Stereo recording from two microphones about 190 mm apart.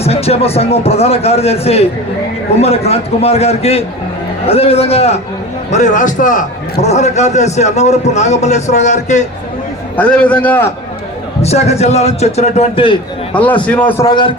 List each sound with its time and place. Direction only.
0.0 s a man's voice: 30° left (ahead or behind)
10.0 s a man's voice: 5° left (ahead or behind)
11.4 s a man's voice: 35° left (ahead or behind)
13.3 s a man's voice: 5° left (ahead or behind)
14.0 s a man's voice: 25° left (ahead or behind)